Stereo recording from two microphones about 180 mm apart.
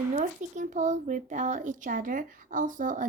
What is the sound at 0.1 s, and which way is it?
Speech, 40° right (ahead or behind).